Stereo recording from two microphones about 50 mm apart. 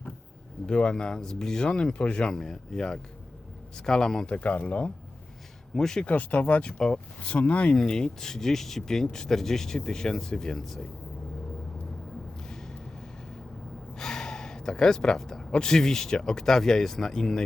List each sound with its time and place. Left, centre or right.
0.7 s speech: centre
2.3 s speech: centre
4.3 s speech: left
5.7 s speech: centre
6.1 s speech: left
7.2 s speech: left
7.8 s speech: centre
12.4 s a sound: centre
13.9 s speech: centre